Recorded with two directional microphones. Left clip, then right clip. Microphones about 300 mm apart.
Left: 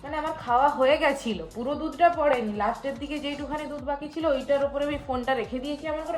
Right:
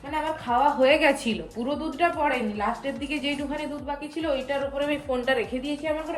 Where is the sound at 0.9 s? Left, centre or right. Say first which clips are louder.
Right 2 dB; left.